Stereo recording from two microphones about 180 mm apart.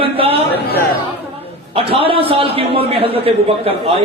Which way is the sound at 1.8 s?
30° right (ahead or behind).